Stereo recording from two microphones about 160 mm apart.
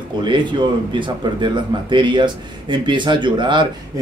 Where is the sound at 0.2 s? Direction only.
30° right (ahead or behind).